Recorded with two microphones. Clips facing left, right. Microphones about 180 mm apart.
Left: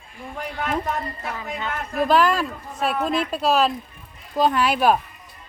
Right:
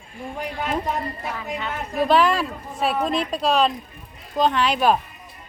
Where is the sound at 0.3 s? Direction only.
15° right (ahead or behind); by 4.9 s 5° left (ahead or behind).